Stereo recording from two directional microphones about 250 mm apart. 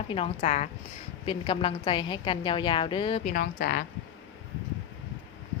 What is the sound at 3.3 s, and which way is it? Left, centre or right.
Speech, left.